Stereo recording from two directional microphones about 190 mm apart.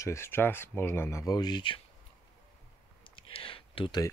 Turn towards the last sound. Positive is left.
turn(degrees=25)  # may be behind; listen again after turning